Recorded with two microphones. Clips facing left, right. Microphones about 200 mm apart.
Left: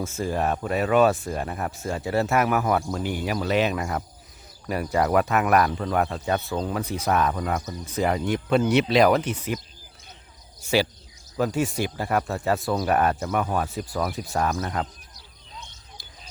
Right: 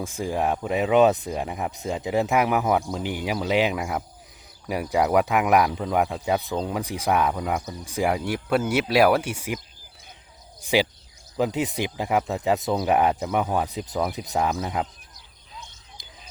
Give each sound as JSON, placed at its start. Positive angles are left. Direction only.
{"t": 0.0, "sound": "speech", "side_deg": -15}
{"t": 10.6, "sound": "speech", "side_deg": -15}
{"t": 16.0, "sound": "a sound", "side_deg": -20}